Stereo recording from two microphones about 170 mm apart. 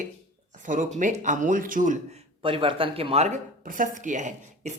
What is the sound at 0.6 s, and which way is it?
Speech, 50° right (ahead or behind).